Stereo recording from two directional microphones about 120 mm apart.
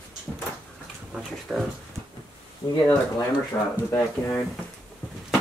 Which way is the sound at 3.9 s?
25° left (ahead or behind).